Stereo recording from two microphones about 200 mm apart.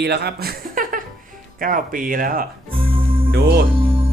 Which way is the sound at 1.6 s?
45° right (ahead or behind).